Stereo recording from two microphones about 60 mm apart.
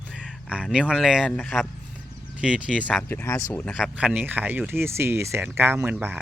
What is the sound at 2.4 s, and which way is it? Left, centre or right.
Speech, centre.